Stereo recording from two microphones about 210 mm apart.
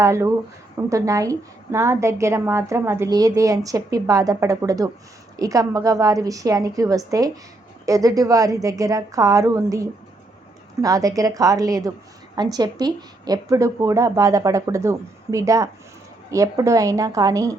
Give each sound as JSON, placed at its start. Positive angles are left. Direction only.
{"t": 0.0, "sound": "a woman's voice", "side_deg": -15}